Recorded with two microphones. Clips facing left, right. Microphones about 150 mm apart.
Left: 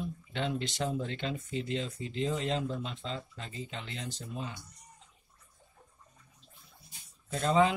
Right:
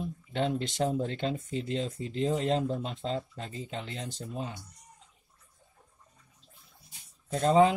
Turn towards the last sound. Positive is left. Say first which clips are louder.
# right 4 dB
turn(degrees=-40)  # may be behind; listen again after turning